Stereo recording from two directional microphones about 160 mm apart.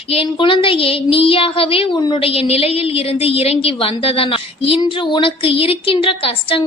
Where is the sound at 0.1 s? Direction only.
35° left (ahead or behind).